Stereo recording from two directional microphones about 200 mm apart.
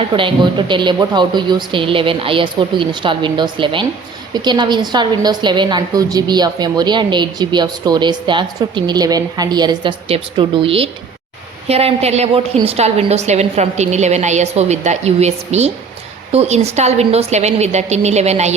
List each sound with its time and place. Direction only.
0.1 s a woman's voice: 25° right (ahead or behind)